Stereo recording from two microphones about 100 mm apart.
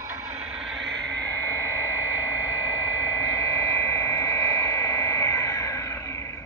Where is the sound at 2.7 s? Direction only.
35° left (ahead or behind).